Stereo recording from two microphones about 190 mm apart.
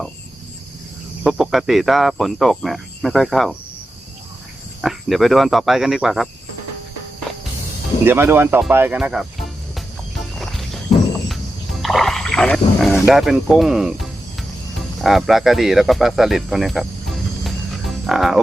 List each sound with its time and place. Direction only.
1.2 s speech: 5° right (ahead or behind)
4.8 s speech: centre (ahead or behind)
8.0 s speech: 10° right (ahead or behind)
11.8 s speech: centre (ahead or behind)